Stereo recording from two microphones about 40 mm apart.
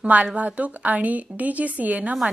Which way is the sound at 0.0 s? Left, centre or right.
Right.